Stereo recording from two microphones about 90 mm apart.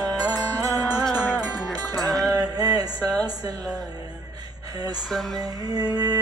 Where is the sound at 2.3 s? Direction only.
45° right (ahead or behind).